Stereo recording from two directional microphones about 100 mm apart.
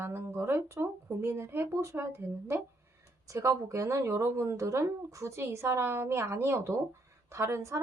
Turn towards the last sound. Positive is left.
turn(degrees=-30)  # may be behind; listen again after turning